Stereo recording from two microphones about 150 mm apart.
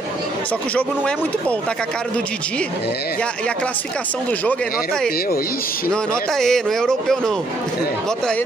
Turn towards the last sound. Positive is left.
turn(degrees=5)  # may be behind; listen again after turning